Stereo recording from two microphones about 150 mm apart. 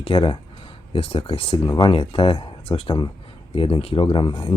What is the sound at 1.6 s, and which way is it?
Speech, 30° left (ahead or behind).